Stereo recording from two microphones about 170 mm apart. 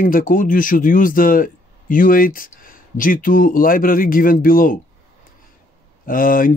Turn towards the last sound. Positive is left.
turn(degrees=55)  # may be behind; listen again after turning